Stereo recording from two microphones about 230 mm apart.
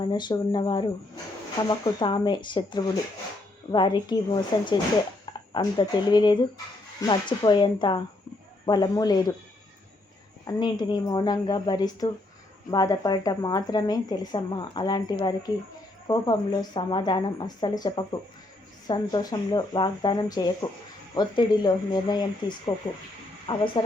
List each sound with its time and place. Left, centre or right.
0.0 s a woman's voice: centre
10.4 s a woman's voice: centre